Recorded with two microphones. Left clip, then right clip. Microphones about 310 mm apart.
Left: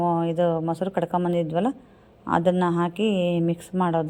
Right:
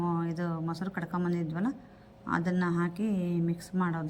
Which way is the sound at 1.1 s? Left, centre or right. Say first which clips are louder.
Left 9 dB; centre.